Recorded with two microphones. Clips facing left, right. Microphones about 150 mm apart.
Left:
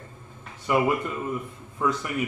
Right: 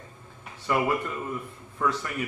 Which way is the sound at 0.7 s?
15° left (ahead or behind).